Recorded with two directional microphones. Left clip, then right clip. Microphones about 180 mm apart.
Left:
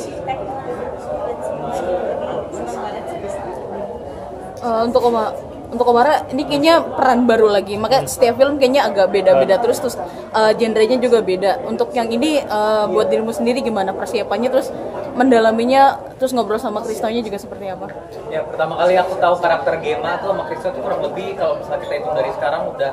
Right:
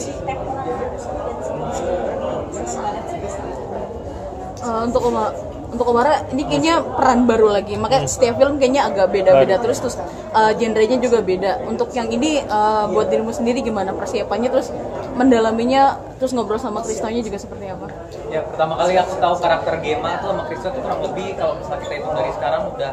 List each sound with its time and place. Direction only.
4.6 s a woman's voice: 25° left (ahead or behind)
18.3 s a man's voice: 5° left (ahead or behind)
22.1 s a man's voice: 5° left (ahead or behind)